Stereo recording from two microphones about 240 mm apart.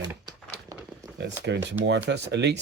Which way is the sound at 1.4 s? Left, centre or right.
Right.